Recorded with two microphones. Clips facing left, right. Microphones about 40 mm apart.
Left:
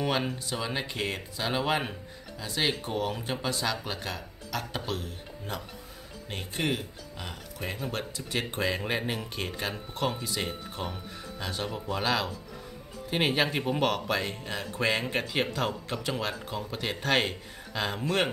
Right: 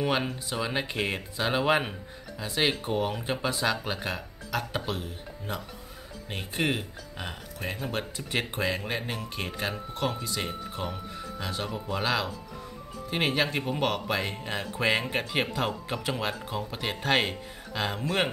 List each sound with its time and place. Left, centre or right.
0.0 s speech: centre
6.2 s speech: centre
6.7 s speech: right
7.5 s speech: centre
8.8 s speech: centre
9.4 s speech: centre